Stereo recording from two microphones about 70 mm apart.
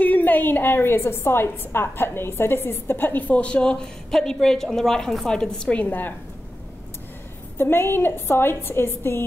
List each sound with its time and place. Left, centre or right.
0.0 s a woman's voice: left
7.5 s a woman's voice: left